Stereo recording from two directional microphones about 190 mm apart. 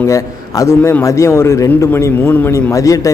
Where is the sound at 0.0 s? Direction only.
15° left (ahead or behind).